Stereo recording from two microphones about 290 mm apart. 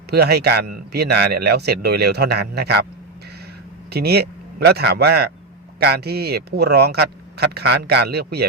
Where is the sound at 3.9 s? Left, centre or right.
Right.